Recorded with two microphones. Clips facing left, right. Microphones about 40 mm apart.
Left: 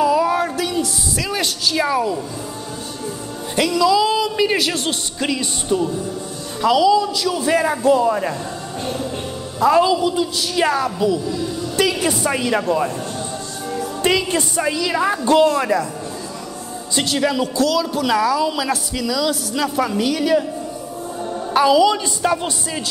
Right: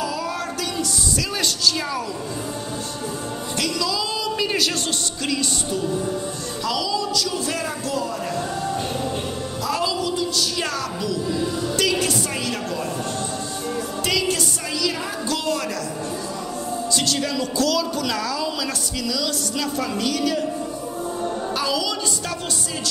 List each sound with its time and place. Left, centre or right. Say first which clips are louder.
0.0 s a sound: left 10 dB; left
1.3 s speech: left 2 dB; centre
3.5 s speech: left 10 dB; left
9.6 s speech: left 10 dB; left
11.3 s a woman's voice: even; centre
11.7 s a woman's voice: left 4 dB; centre; by 12.9 s left
14.0 s a woman's voice: left 5 dB; left
16.9 s speech: left 6 dB; left
17.6 s a woman's voice: left 1 dB; centre
21.5 s speech: left 14 dB; left